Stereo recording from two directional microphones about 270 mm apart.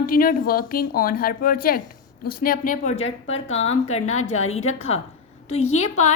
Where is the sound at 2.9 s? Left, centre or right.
Left.